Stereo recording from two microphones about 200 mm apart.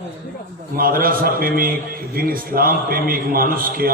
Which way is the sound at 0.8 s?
45° right (ahead or behind).